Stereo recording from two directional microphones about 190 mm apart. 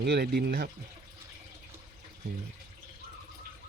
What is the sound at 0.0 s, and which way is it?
Speech, 60° right (ahead or behind).